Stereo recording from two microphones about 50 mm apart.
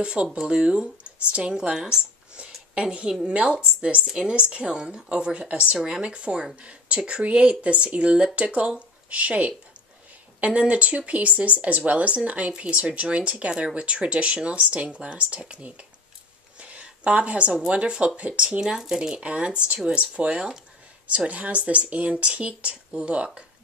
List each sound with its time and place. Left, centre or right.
0.0 s speech: right
16.5 s a sound: right
17.6 s speech: centre
18.6 s speech: centre
18.9 s speech: right
21.3 s speech: right